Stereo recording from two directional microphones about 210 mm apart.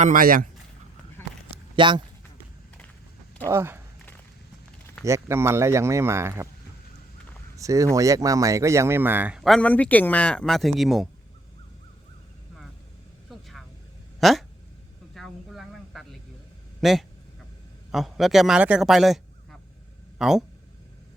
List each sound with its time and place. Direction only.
0.0 s speech: 40° right (ahead or behind)
1.7 s speech: 25° right (ahead or behind)
3.4 s speech: 10° right (ahead or behind)
5.0 s speech: 15° right (ahead or behind)
7.5 s speech: 15° right (ahead or behind)
14.2 s speech: centre (ahead or behind)
15.1 s a sound: centre (ahead or behind)
16.8 s a man's voice: centre (ahead or behind)